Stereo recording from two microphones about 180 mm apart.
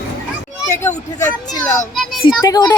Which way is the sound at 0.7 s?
15° left (ahead or behind).